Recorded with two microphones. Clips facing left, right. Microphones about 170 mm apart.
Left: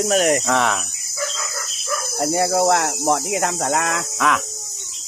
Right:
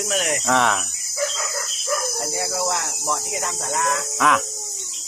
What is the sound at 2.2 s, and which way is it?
Speech, 50° left (ahead or behind).